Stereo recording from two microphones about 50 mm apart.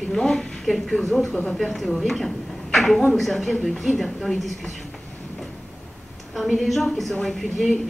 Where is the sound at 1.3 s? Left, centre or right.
Centre.